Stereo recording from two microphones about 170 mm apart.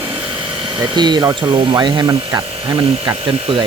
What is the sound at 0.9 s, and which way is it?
Speech, 25° right (ahead or behind).